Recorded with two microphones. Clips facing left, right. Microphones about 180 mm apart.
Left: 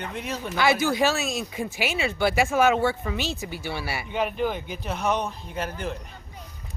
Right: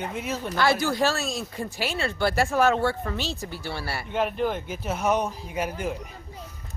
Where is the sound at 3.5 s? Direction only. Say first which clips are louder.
Left 1 dB; 15° left (ahead or behind).